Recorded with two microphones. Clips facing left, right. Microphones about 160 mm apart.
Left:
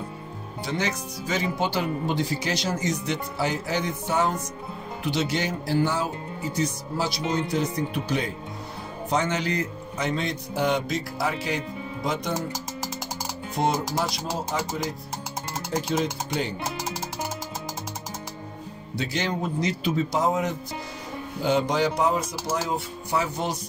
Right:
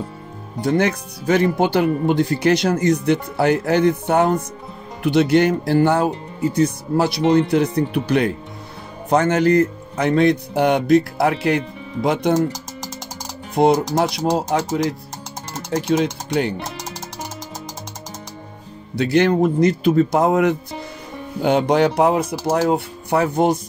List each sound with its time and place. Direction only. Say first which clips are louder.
0.6 s speech: right 10 dB; 55° right (ahead or behind)
9.1 s speech: right 11 dB; 55° right (ahead or behind)
13.6 s speech: right 10 dB; 60° right (ahead or behind)
18.9 s speech: right 12 dB; 60° right (ahead or behind)